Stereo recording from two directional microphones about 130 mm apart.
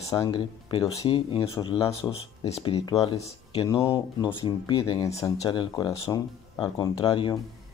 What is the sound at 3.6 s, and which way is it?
Speech, 20° left (ahead or behind).